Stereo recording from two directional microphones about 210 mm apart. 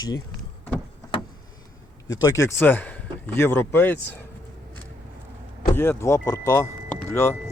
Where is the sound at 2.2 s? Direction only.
15° left (ahead or behind).